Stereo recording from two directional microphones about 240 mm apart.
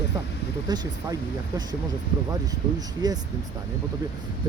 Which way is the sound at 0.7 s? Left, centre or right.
Centre.